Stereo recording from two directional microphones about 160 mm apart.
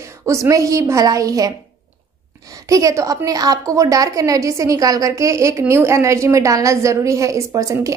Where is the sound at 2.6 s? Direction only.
20° right (ahead or behind).